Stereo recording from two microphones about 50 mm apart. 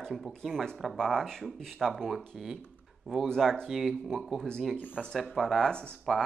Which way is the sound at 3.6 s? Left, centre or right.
Centre.